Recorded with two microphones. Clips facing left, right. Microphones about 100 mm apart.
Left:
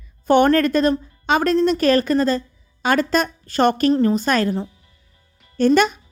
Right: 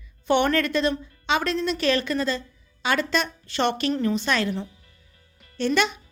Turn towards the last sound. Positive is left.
turn(degrees=45)  # may be behind; listen again after turning